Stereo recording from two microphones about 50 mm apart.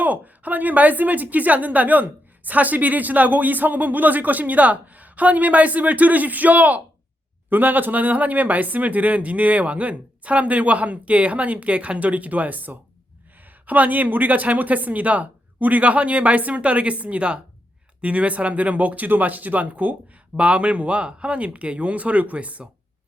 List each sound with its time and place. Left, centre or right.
0.0 s a woman's voice: right